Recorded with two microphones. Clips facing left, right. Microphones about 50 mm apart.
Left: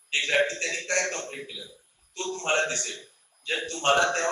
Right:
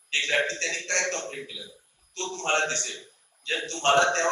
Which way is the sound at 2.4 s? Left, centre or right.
Centre.